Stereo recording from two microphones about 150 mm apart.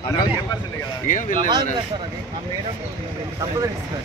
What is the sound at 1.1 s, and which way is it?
Speech, 60° left (ahead or behind).